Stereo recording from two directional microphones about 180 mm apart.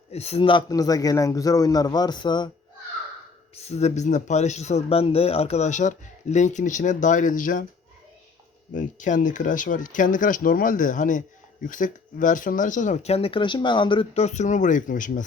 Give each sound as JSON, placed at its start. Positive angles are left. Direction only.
{"t": 0.1, "sound": "speech", "side_deg": 35}
{"t": 3.5, "sound": "speech", "side_deg": 35}
{"t": 8.7, "sound": "speech", "side_deg": 45}